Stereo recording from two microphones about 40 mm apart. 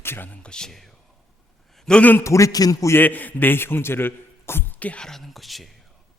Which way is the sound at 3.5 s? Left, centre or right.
Left.